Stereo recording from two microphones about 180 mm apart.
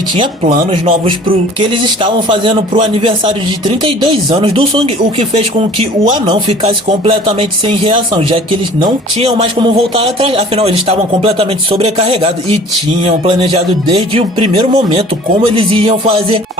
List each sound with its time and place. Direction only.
0.7 s speech: 30° right (ahead or behind)